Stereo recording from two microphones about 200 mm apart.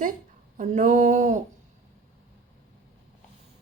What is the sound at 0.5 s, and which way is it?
Speech, 40° right (ahead or behind).